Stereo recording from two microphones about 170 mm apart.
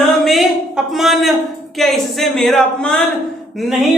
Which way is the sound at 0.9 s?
Centre (ahead or behind).